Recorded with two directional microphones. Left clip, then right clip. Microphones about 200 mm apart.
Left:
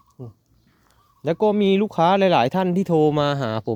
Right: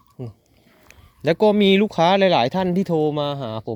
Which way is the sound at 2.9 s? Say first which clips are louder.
Left 4 dB; 25° left (ahead or behind).